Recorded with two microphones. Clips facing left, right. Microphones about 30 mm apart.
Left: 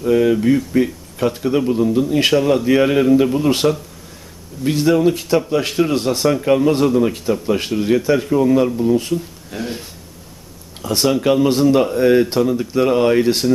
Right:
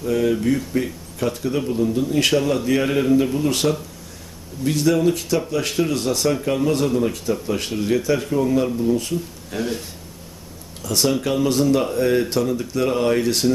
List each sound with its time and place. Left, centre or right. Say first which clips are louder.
0.0 s speech: left 5 dB; centre
3.3 s speech: left 4 dB; centre
9.1 s speech: left 1 dB; centre
10.8 s speech: left 5 dB; left